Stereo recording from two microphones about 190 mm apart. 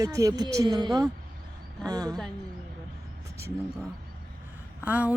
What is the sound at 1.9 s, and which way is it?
Speech, 20° right (ahead or behind).